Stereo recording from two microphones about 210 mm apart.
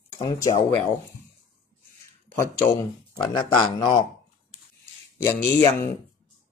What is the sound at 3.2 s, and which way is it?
Speech, 20° left (ahead or behind).